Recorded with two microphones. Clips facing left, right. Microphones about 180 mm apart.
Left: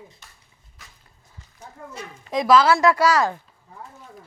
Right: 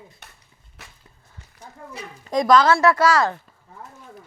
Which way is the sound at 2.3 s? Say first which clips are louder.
Right 1 dB; 5° left (ahead or behind).